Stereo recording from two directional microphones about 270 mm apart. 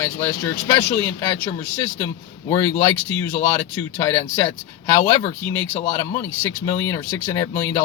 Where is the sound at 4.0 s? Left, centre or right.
Centre.